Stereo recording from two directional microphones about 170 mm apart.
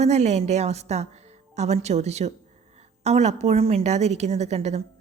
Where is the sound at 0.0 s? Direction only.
40° right (ahead or behind).